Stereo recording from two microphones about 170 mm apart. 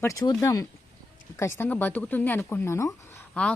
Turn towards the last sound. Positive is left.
turn(degrees=5)  # may be behind; listen again after turning